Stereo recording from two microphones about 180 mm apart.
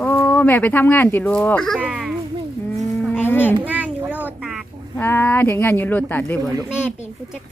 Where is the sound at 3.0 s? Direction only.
10° left (ahead or behind).